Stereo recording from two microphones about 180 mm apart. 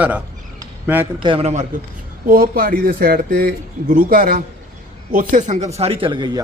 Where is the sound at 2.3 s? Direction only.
55° right (ahead or behind); by 6.4 s 25° right (ahead or behind).